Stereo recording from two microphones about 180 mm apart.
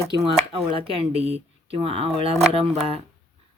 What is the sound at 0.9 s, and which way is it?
Speech, 35° right (ahead or behind).